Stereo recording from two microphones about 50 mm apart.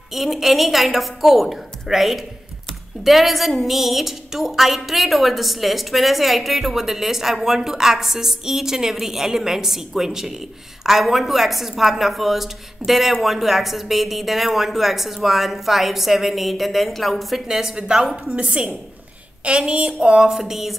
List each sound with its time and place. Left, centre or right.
0.1 s a woman's voice: centre
17.5 s a woman's voice: centre
18.2 s a woman's voice: right; by 20.7 s centre